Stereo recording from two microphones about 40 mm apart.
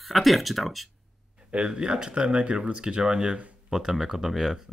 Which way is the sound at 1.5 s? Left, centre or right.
Right.